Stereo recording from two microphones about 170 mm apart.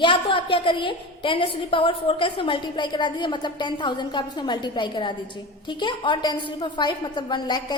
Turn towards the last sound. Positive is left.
turn(degrees=25)  # may be behind; listen again after turning